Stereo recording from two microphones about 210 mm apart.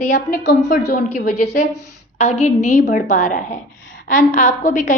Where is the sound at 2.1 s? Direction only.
30° left (ahead or behind).